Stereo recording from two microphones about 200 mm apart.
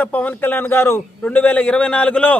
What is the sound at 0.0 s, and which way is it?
Speech, 10° left (ahead or behind).